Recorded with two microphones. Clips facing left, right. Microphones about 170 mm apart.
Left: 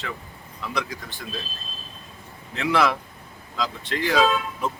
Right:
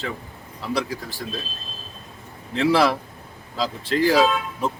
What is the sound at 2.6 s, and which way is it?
Speech, 35° right (ahead or behind).